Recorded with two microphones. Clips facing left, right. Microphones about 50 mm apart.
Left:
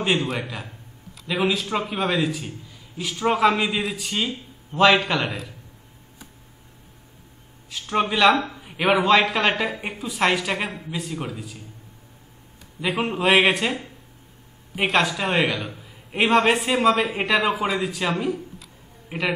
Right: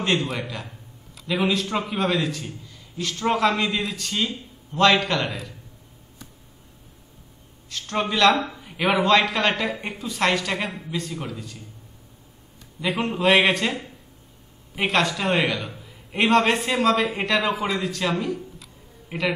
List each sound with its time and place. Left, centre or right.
0.0 s a man's voice: centre
7.7 s a man's voice: centre
12.8 s a man's voice: centre